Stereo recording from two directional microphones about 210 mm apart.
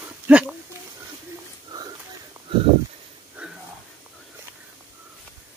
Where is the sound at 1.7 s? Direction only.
20° right (ahead or behind).